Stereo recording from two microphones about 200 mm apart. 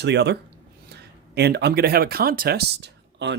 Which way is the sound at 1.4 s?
55° right (ahead or behind).